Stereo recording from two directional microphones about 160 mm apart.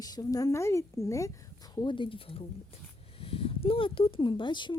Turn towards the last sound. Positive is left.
turn(degrees=30)  # may be behind; listen again after turning